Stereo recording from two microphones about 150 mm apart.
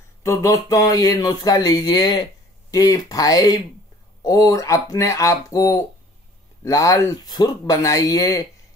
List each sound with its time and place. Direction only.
0.2 s speech: 20° left (ahead or behind)